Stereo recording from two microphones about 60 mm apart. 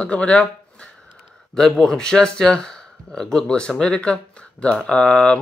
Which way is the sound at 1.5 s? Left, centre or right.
Centre.